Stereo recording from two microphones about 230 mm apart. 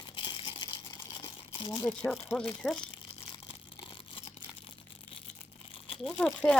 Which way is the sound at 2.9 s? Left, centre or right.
Left.